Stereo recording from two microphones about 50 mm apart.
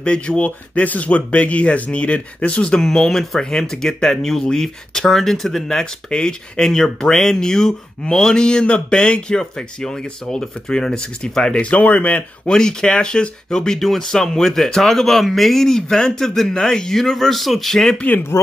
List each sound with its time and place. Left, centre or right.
0.0 s speech: left
11.7 s speech: left
12.4 s speech: centre
17.9 s speech: left